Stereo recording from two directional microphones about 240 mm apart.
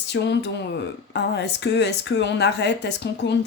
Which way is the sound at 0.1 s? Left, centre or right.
Left.